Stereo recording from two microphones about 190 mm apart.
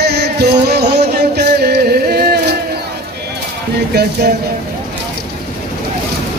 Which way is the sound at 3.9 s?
60° right (ahead or behind).